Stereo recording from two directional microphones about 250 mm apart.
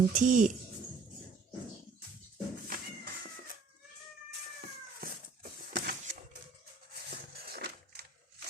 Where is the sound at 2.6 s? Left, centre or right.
Right.